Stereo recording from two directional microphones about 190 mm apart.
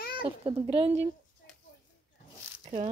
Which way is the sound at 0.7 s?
30° right (ahead or behind).